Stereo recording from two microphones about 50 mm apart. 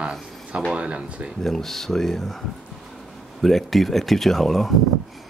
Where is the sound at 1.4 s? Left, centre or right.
Centre.